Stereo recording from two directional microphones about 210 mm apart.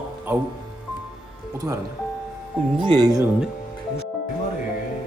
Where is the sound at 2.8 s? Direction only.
20° right (ahead or behind).